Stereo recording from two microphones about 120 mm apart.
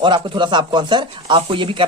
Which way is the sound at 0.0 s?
40° right (ahead or behind).